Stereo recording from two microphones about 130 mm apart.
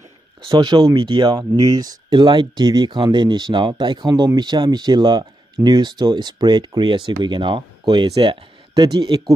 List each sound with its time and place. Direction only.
0.5 s speech: 35° right (ahead or behind)